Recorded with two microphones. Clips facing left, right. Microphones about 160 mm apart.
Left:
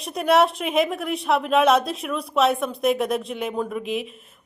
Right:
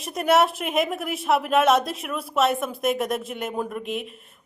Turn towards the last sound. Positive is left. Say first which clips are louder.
# left 3 dB
turn(degrees=0)  # may be behind; listen again after turning